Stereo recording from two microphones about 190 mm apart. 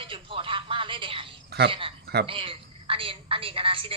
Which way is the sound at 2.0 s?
60° right (ahead or behind).